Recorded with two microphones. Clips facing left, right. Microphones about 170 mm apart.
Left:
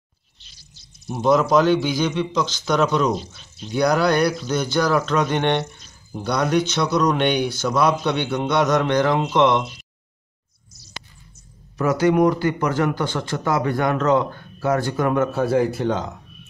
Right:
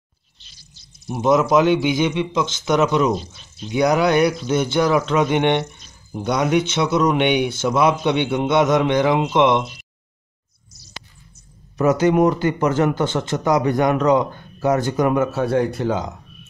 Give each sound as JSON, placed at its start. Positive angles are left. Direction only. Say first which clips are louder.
{"t": 1.0, "sound": "a man's voice", "louder": "right 1 dB", "side_deg": -15}
{"t": 2.8, "sound": "a man's voice", "louder": "right 1 dB", "side_deg": -5}
{"t": 4.0, "sound": "speech", "louder": "right 2 dB", "side_deg": -20}
{"t": 4.9, "sound": "a man's voice", "louder": "right 2 dB", "side_deg": -10}
{"t": 11.8, "sound": "speech", "louder": "right 2 dB", "side_deg": -20}
{"t": 15.2, "sound": "a man's voice", "louder": "even", "side_deg": 0}
{"t": 15.9, "sound": "a man's voice", "louder": "right 1 dB", "side_deg": -10}